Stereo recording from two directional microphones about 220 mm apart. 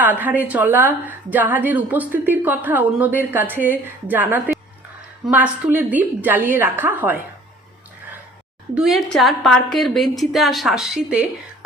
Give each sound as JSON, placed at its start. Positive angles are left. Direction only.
{"t": 0.0, "sound": "a woman's voice", "side_deg": -10}
{"t": 8.7, "sound": "a woman's voice", "side_deg": 0}